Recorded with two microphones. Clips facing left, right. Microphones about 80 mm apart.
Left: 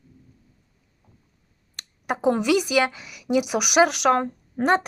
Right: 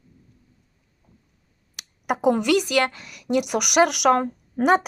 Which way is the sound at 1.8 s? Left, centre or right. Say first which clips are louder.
Right 2 dB; centre.